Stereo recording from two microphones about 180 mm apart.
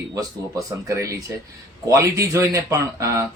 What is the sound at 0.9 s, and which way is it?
Speech, 15° right (ahead or behind).